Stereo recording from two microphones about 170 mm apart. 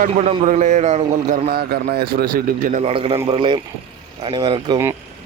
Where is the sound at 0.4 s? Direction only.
45° right (ahead or behind).